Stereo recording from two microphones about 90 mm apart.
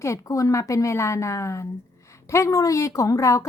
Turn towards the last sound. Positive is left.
turn(degrees=40)  # may be behind; listen again after turning